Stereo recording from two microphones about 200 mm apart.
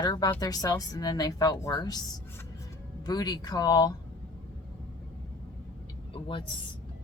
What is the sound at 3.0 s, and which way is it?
Speech, 20° left (ahead or behind).